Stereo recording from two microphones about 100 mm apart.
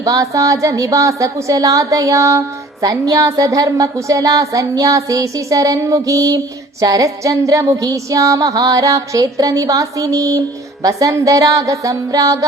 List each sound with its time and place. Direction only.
0.0 s a woman's voice: 35° right (ahead or behind)